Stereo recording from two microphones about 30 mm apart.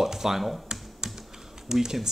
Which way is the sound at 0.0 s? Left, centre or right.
Centre.